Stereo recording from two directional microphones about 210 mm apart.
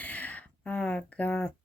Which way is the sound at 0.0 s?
5° left (ahead or behind).